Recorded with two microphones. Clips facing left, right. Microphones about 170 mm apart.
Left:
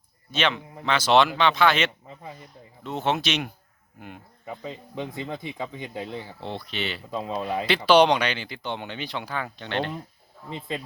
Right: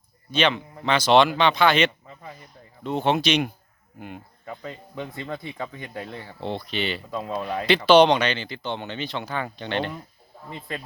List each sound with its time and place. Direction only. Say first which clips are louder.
0.3 s speech: right 3 dB; centre (ahead or behind)
4.4 s speech: left 1 dB; 15° left (ahead or behind)
6.4 s speech: right 6 dB; centre (ahead or behind)
7.1 s speech: even; 15° left (ahead or behind); by 9.9 s centre (ahead or behind)
10.5 s speech: left 2 dB; 20° left (ahead or behind)